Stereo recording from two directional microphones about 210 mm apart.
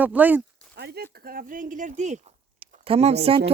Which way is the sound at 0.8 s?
50° right (ahead or behind).